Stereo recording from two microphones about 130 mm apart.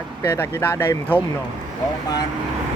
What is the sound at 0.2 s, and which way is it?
Speech, 20° left (ahead or behind).